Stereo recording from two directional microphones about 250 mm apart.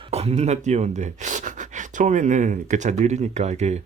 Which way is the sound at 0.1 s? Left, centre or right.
Right.